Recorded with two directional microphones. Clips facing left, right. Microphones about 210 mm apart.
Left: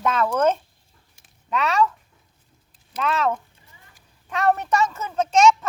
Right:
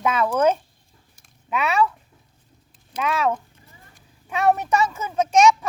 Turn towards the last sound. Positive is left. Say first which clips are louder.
# even
turn(degrees=-10)  # may be behind; listen again after turning